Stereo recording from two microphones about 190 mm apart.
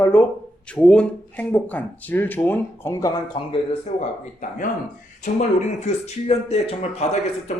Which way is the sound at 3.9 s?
35° left (ahead or behind).